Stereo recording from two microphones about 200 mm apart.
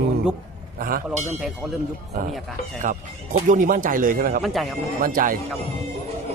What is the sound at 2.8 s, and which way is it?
Speech, 40° right (ahead or behind).